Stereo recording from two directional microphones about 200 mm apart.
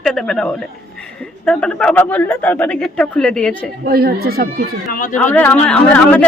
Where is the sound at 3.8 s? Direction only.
50° right (ahead or behind).